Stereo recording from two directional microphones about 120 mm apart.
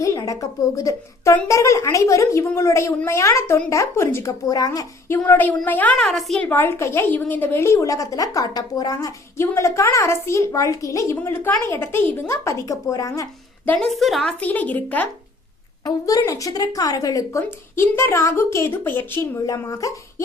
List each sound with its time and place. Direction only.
0.0 s a woman's voice: 30° left (ahead or behind)
5.0 s speech: 20° left (ahead or behind)
6.0 s a woman's voice: centre (ahead or behind)
6.5 s a woman's voice: 20° left (ahead or behind)
13.9 s a woman's voice: centre (ahead or behind)
14.4 s speech: 15° left (ahead or behind)
15.8 s a woman's voice: 30° left (ahead or behind)